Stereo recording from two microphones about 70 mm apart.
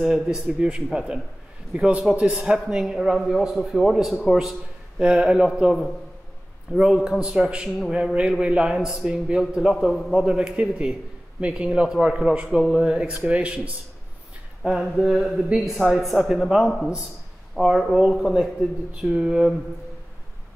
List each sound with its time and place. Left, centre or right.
0.0 s a man's voice: centre
7.9 s speech: centre
10.2 s speech: centre
14.6 s a man's voice: centre